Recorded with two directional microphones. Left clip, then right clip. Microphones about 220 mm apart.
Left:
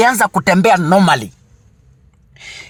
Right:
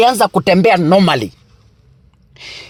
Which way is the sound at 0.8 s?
15° right (ahead or behind).